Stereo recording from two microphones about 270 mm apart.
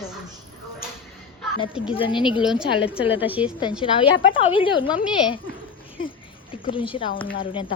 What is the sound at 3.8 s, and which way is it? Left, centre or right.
A woman's voice, centre.